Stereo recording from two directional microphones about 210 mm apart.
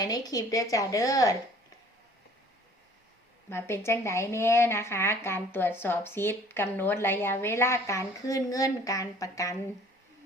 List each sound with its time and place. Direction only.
0.0 s speech: 15° left (ahead or behind)
3.5 s speech: 10° left (ahead or behind)